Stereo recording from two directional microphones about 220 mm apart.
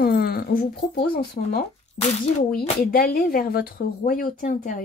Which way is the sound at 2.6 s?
40° left (ahead or behind).